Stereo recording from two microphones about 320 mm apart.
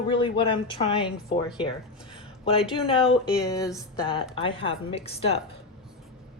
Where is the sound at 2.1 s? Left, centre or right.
Centre.